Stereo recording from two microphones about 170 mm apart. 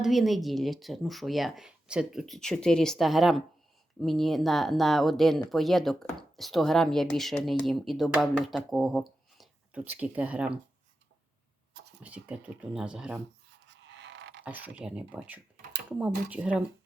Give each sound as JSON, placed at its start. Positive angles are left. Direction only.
{"t": 0.0, "sound": "speech", "side_deg": 0}
{"t": 12.0, "sound": "speech", "side_deg": -10}
{"t": 13.7, "sound": "a sound", "side_deg": -90}
{"t": 14.4, "sound": "speech", "side_deg": -10}